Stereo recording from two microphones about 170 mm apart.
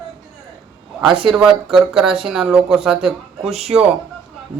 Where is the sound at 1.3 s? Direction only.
5° right (ahead or behind).